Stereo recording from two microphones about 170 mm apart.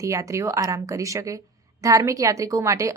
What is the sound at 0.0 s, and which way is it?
Speech, 20° right (ahead or behind).